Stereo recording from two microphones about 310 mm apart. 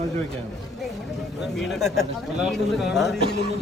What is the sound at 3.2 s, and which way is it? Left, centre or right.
Speech, left.